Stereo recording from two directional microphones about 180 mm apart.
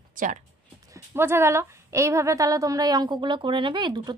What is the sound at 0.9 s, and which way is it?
A woman's voice, 15° right (ahead or behind).